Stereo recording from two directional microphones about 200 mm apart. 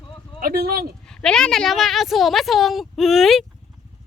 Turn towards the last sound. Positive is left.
turn(degrees=0)  # may be behind; listen again after turning